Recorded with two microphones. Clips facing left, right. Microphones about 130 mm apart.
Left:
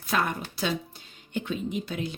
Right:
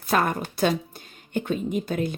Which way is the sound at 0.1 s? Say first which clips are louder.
Right 5 dB; 45° right (ahead or behind).